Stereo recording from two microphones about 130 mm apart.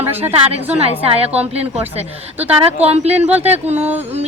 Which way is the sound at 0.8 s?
50° right (ahead or behind).